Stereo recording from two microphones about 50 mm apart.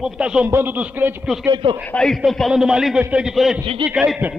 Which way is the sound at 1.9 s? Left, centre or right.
Left.